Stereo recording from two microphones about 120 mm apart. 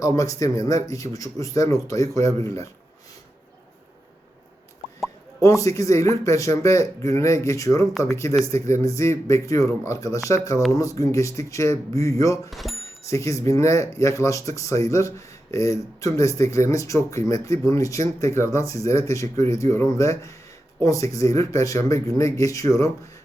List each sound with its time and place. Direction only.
0.0 s speech: 30° left (ahead or behind)
5.4 s speech: 25° left (ahead or behind)
12.5 s speech: centre (ahead or behind)
13.1 s speech: 25° left (ahead or behind)